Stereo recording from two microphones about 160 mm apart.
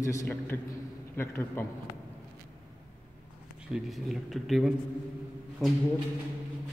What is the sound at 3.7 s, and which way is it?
A man's voice, centre (ahead or behind).